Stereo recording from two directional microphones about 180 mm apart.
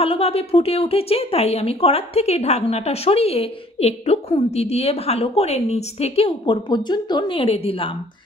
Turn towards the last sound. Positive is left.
turn(degrees=30)  # may be behind; listen again after turning